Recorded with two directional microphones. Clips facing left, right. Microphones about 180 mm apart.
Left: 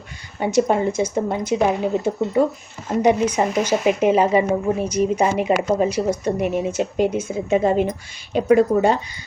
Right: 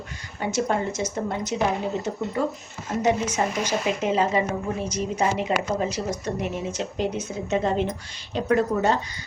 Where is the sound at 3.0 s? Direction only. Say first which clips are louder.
Left 5 dB; 10° left (ahead or behind).